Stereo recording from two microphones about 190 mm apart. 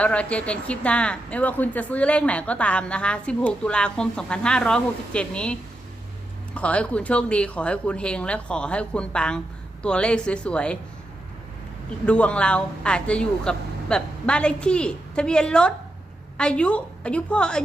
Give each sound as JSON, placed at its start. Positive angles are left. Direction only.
{"t": 0.0, "sound": "speech", "side_deg": 5}
{"t": 12.0, "sound": "speech", "side_deg": 5}